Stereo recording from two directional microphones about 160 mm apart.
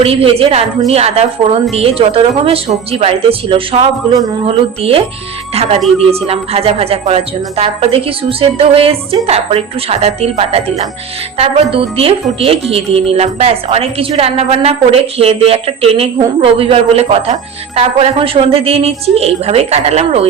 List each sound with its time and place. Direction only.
0.0 s a woman's voice: 35° right (ahead or behind)
6.1 s a woman's voice: 40° right (ahead or behind)